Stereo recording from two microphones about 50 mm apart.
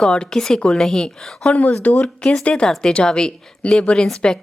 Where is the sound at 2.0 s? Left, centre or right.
Centre.